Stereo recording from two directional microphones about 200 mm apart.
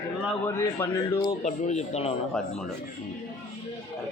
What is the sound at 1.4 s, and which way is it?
Speech, 35° left (ahead or behind).